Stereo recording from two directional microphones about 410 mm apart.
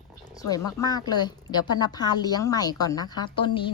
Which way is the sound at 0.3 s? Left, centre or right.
Centre.